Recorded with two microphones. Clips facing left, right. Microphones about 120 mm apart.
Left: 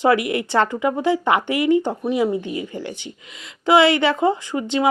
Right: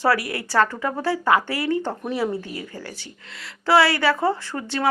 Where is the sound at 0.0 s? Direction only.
20° left (ahead or behind).